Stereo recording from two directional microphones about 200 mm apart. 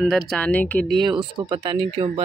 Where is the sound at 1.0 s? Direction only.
20° right (ahead or behind).